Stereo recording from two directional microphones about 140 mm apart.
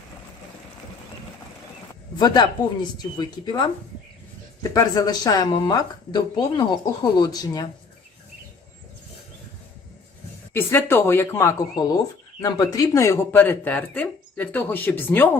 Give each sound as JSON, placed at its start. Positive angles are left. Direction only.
{"t": 2.1, "sound": "speech", "side_deg": 30}
{"t": 4.7, "sound": "speech", "side_deg": 25}
{"t": 10.5, "sound": "speech", "side_deg": 15}